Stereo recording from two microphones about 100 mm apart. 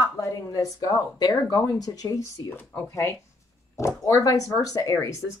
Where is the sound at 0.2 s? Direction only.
35° left (ahead or behind).